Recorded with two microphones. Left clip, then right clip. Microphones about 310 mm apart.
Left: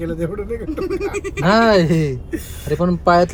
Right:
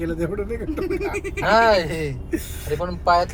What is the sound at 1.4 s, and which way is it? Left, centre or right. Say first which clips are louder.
Speech: left 2 dB; left.